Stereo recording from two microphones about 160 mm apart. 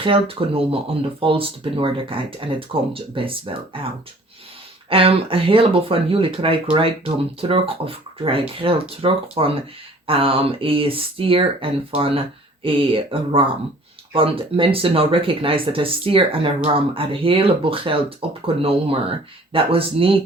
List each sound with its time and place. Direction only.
0.0 s speech: 35° right (ahead or behind)
4.9 s speech: 35° right (ahead or behind)